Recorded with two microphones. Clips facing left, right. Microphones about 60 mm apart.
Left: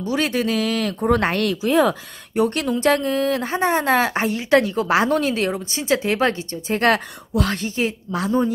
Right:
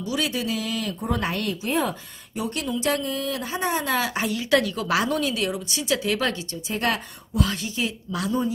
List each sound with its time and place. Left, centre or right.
0.0 s speech: left
6.7 s speech: left
7.6 s speech: left